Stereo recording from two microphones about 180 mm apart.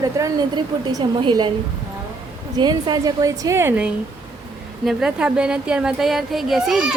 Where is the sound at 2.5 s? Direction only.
20° right (ahead or behind).